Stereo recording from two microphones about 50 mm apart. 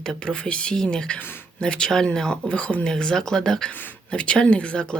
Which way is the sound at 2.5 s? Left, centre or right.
Left.